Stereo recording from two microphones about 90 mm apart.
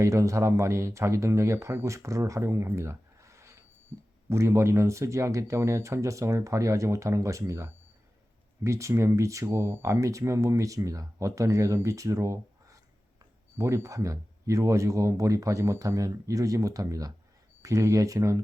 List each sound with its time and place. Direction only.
0.0 s speech: 35° right (ahead or behind)